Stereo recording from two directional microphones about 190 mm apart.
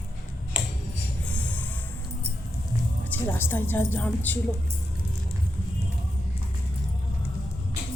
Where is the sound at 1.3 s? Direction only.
5° left (ahead or behind).